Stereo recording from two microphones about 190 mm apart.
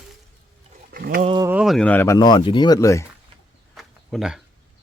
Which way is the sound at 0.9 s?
50° right (ahead or behind).